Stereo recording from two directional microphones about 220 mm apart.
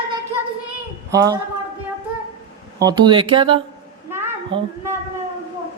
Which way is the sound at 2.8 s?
15° right (ahead or behind).